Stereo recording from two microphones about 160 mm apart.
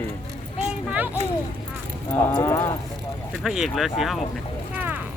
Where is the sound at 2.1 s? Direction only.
20° left (ahead or behind).